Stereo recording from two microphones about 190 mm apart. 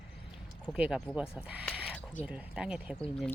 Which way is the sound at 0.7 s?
5° right (ahead or behind).